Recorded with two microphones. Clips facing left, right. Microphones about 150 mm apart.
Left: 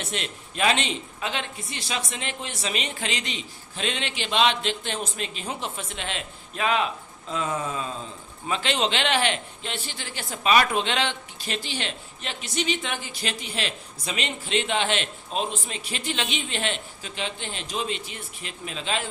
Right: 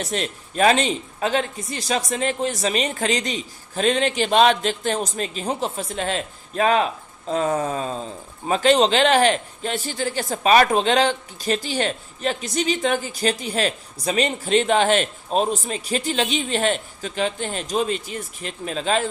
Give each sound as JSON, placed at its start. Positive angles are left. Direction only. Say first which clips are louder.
{"t": 0.0, "sound": "a man's voice", "louder": "right 6 dB", "side_deg": -40}